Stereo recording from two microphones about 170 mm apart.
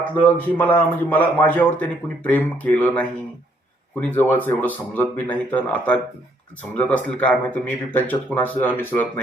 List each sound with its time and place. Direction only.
0.0 s a man's voice: 10° left (ahead or behind)